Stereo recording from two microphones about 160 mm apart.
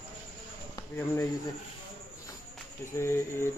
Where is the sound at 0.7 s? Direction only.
15° left (ahead or behind).